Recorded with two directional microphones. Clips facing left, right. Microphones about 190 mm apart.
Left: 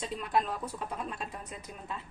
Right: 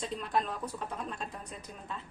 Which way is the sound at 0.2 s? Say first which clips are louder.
Left 3 dB; 5° left (ahead or behind).